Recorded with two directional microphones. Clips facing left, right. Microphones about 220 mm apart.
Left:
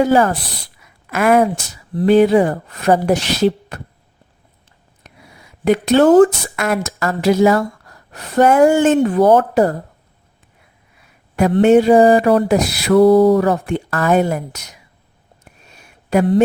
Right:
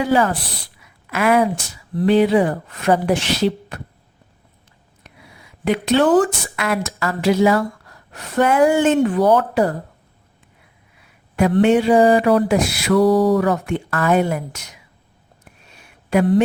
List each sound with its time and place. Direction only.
0.0 s speech: 45° left (ahead or behind)
5.6 s speech: 45° left (ahead or behind)
11.6 s speech: 40° left (ahead or behind)
13.0 s mantra: 25° left (ahead or behind)
13.4 s speech: 35° left (ahead or behind)